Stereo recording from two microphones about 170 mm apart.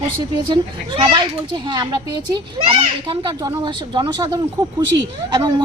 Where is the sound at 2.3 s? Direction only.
30° right (ahead or behind).